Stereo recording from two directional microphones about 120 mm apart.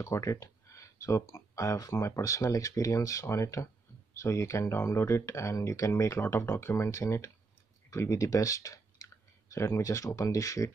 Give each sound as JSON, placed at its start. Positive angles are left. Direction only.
{"t": 0.0, "sound": "speech", "side_deg": 25}